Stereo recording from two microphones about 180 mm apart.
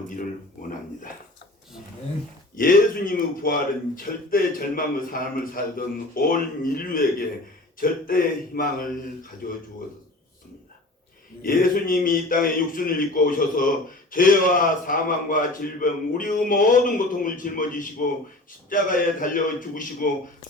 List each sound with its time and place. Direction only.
2.6 s speech: 50° left (ahead or behind)
11.4 s speech: 50° left (ahead or behind)